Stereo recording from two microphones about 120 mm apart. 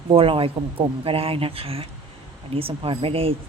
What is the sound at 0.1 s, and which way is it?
A woman's voice, 50° right (ahead or behind).